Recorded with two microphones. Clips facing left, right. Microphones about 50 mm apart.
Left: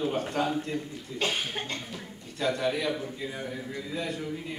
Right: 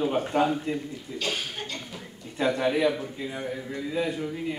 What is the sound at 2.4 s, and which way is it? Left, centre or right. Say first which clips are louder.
A man's voice: right 4 dB; centre.